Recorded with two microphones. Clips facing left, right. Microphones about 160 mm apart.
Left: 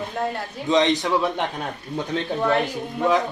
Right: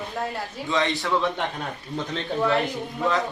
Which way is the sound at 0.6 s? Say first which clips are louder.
Left 6 dB; 20° left (ahead or behind).